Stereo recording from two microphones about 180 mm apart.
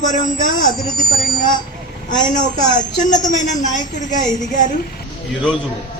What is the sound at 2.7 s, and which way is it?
Speech, 45° left (ahead or behind).